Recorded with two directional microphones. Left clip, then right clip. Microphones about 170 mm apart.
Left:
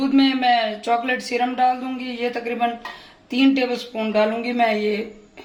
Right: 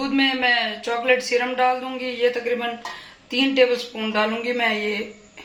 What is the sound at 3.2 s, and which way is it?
A woman's voice, 75° left (ahead or behind).